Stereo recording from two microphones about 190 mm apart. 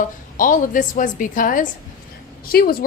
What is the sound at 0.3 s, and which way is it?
A woman's voice, 45° left (ahead or behind).